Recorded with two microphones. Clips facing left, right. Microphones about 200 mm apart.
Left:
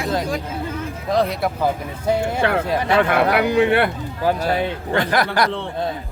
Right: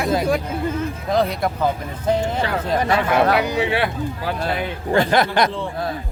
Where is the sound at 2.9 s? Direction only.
60° left (ahead or behind).